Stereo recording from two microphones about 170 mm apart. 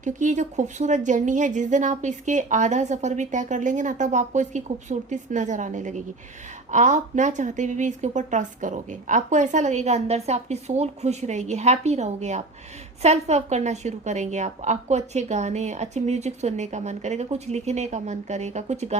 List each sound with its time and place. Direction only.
0.0 s a woman's voice: 45° right (ahead or behind)